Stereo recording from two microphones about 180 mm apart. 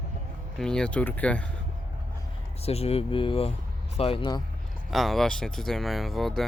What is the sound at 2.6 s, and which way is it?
Speech, 35° left (ahead or behind).